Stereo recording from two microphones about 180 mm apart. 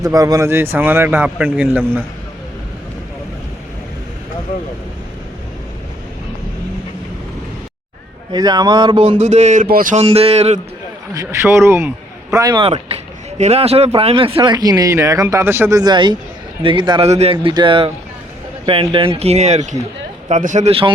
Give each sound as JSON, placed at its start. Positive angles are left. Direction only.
{"t": 0.0, "sound": "speech", "side_deg": -20}
{"t": 8.3, "sound": "speech", "side_deg": -20}
{"t": 9.6, "sound": "speech", "side_deg": -50}
{"t": 11.1, "sound": "speech", "side_deg": -15}